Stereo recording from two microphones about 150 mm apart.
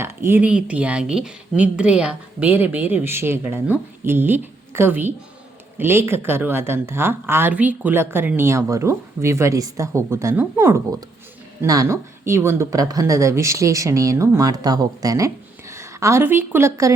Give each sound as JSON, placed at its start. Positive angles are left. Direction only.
{"t": 0.0, "sound": "a woman's voice", "side_deg": -15}